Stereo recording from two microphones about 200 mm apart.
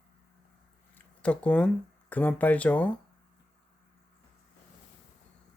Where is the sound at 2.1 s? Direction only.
10° left (ahead or behind).